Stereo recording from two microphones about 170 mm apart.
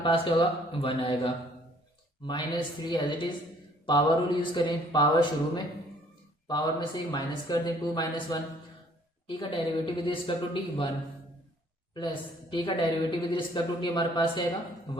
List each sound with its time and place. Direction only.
0.0 s a woman's voice: 30° left (ahead or behind)
6.5 s a woman's voice: 25° left (ahead or behind)
11.9 s a woman's voice: 25° left (ahead or behind)